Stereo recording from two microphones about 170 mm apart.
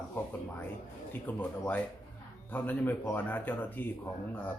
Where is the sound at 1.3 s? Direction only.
10° left (ahead or behind).